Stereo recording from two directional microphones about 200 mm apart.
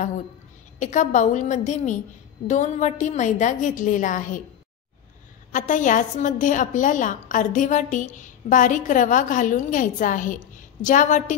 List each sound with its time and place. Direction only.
0.7 s a woman's voice: 40° left (ahead or behind)
5.5 s a woman's voice: 40° left (ahead or behind)